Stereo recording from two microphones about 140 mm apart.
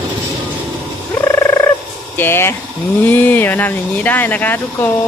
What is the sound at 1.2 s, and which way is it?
Fowl, 20° left (ahead or behind).